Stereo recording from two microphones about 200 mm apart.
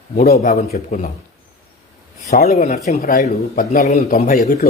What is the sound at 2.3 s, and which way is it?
A man's voice, 45° left (ahead or behind).